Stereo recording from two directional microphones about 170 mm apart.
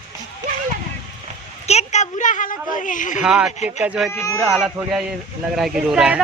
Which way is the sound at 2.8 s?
50° left (ahead or behind).